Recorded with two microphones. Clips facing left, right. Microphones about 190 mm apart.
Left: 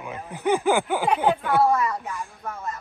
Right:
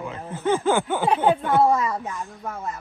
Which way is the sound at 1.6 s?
15° right (ahead or behind).